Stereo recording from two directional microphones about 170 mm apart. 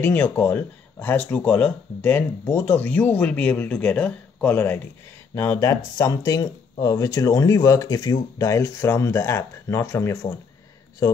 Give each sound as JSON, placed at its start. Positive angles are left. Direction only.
{"t": 0.0, "sound": "speech", "side_deg": 10}